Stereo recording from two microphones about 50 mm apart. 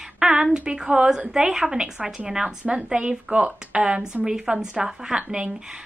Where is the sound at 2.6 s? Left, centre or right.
Right.